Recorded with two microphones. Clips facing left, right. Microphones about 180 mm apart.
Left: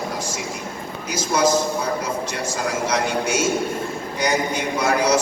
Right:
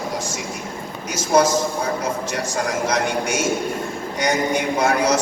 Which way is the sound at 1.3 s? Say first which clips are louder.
Right 2 dB; 50° right (ahead or behind).